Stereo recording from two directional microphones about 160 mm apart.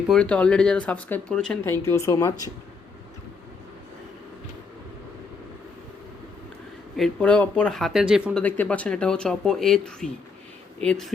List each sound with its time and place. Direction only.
0.1 s speech: 5° left (ahead or behind)
1.8 s speech: 20° left (ahead or behind)
6.9 s speech: 5° left (ahead or behind)
8.4 s speech: 10° left (ahead or behind)